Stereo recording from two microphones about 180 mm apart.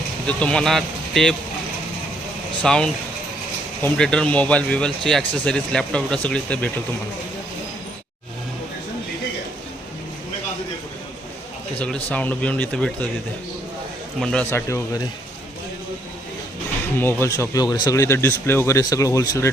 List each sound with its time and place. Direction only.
0.3 s speech: 5° left (ahead or behind)
2.6 s speech: 5° left (ahead or behind)
11.8 s speech: 5° left (ahead or behind)
14.2 s speech: 5° left (ahead or behind)
14.5 s speech: 15° left (ahead or behind)
17.0 s speech: 15° left (ahead or behind)